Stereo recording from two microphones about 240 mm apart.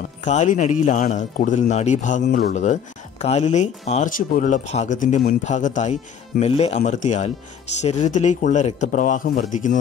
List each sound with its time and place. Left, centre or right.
0.2 s speech: left